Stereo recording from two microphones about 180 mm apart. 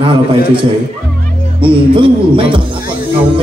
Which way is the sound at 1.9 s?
30° right (ahead or behind).